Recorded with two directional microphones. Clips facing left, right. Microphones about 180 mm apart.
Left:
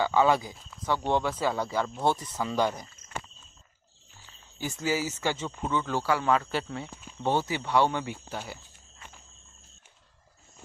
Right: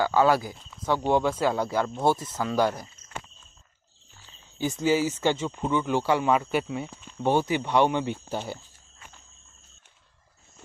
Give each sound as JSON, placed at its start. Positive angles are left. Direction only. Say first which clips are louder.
{"t": 0.0, "sound": "speech", "louder": "right 2 dB", "side_deg": -5}
{"t": 0.6, "sound": "a sound", "louder": "right 1 dB", "side_deg": 0}
{"t": 0.8, "sound": "speech", "louder": "right 4 dB", "side_deg": -10}
{"t": 4.3, "sound": "speech", "louder": "right 6 dB", "side_deg": -20}